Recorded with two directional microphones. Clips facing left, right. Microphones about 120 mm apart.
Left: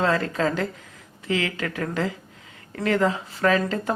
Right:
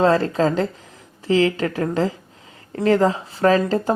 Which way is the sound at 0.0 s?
30° right (ahead or behind).